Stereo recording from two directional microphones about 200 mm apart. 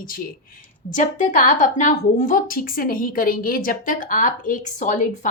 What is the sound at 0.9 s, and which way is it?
A woman's voice, 40° left (ahead or behind).